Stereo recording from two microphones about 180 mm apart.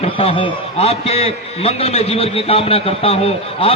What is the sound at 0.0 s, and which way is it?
A man's voice, 30° left (ahead or behind).